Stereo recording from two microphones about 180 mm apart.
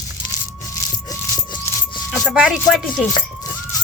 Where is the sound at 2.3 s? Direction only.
Centre (ahead or behind).